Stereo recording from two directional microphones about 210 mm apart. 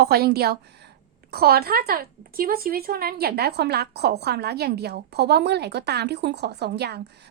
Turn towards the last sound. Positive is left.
turn(degrees=-50)  # may be behind; listen again after turning